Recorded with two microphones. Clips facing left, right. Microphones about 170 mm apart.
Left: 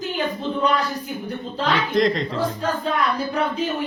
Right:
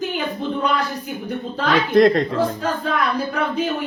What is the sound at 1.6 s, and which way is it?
Speech, 55° right (ahead or behind).